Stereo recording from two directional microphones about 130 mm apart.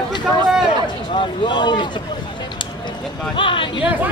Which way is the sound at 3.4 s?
40° left (ahead or behind).